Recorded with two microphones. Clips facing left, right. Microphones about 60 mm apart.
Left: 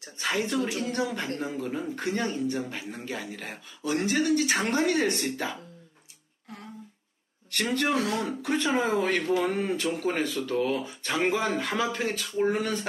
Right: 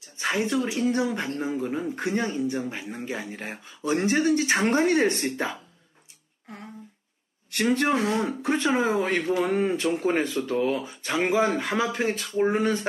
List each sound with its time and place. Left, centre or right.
0.2 s speech: right
7.5 s speech: centre
7.8 s speech: right
8.7 s speech: centre
9.0 s speech: right
10.5 s speech: centre